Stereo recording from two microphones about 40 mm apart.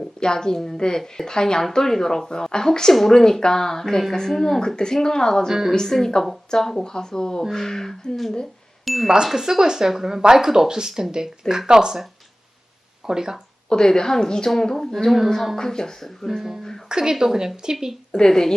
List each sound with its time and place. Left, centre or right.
0.2 s a woman's voice: centre
5.5 s speech: centre
5.7 s a woman's voice: centre
8.8 s speech: centre
9.0 s speech: centre
13.1 s speech: centre
13.7 s a woman's voice: centre
16.0 s speech: centre
16.9 s speech: centre
18.2 s a woman's voice: centre